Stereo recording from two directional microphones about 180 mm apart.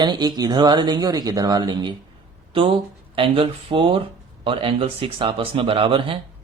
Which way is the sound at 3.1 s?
30° right (ahead or behind).